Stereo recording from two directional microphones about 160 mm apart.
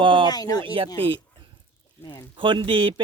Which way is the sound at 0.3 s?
25° left (ahead or behind).